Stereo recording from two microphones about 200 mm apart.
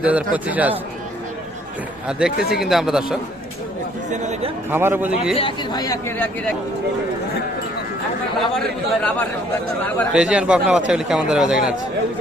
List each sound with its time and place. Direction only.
0.0 s a man's voice: 5° right (ahead or behind)
2.0 s a man's voice: 5° right (ahead or behind)
4.1 s speech: 35° right (ahead or behind)
4.7 s a man's voice: 10° right (ahead or behind)
5.4 s speech: 20° left (ahead or behind)
8.5 s speech: 5° left (ahead or behind)
10.2 s a man's voice: 5° right (ahead or behind)